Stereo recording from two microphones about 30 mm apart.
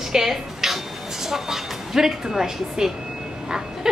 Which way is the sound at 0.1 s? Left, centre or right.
Centre.